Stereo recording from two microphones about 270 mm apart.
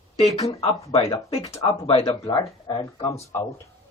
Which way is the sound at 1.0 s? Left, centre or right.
Centre.